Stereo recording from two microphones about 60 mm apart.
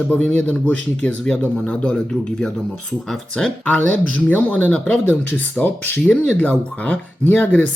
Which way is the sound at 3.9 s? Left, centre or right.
Left.